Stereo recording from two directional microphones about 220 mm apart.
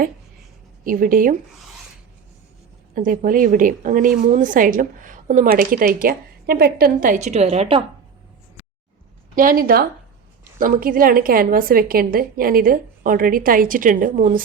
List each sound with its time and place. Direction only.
0.9 s a woman's voice: 40° right (ahead or behind)
2.9 s a woman's voice: 35° right (ahead or behind)
9.3 s a woman's voice: 40° right (ahead or behind)